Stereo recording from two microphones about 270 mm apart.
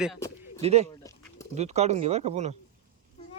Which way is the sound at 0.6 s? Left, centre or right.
Right.